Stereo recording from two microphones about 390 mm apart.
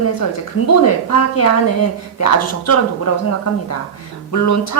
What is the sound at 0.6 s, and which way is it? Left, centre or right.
A woman's voice, left.